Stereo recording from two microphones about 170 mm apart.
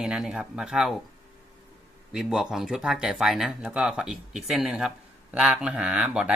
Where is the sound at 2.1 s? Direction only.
5° right (ahead or behind).